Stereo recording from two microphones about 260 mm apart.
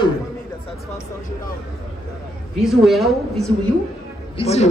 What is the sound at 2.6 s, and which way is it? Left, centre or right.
Speech, centre.